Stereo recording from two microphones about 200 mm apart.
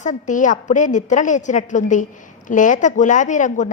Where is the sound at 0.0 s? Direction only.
40° left (ahead or behind).